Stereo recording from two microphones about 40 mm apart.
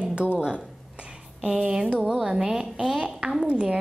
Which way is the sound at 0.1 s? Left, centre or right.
Right.